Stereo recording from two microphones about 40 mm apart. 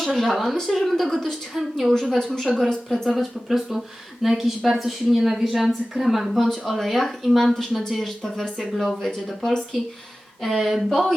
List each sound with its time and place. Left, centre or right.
0.1 s a woman's voice: centre
2.1 s speech: centre
3.1 s a woman's voice: centre
10.4 s a woman's voice: centre